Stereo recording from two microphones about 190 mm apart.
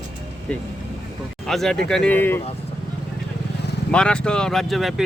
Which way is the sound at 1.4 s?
Centre (ahead or behind).